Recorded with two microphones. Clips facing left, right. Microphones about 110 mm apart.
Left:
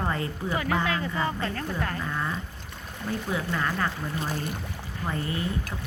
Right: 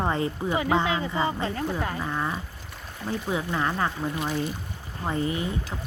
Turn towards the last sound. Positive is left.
turn(degrees=-20)  # may be behind; listen again after turning